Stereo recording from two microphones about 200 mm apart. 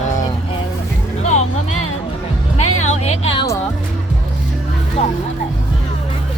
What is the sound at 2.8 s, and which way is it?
Music, 35° left (ahead or behind).